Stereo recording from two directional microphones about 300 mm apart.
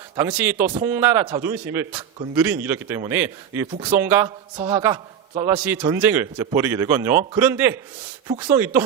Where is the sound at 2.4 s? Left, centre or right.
Centre.